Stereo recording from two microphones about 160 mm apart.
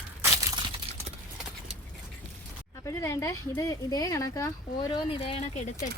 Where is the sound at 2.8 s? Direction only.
15° left (ahead or behind).